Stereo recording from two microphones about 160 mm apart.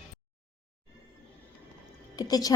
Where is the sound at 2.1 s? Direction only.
25° left (ahead or behind).